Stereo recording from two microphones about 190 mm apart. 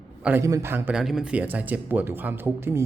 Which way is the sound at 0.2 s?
10° right (ahead or behind).